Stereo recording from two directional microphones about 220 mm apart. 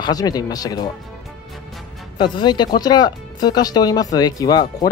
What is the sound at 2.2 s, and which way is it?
Speech, 20° left (ahead or behind).